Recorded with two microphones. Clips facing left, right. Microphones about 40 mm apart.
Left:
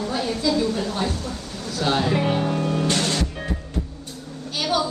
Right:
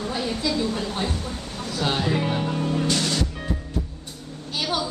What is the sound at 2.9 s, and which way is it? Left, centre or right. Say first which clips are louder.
Music: left 1 dB; left.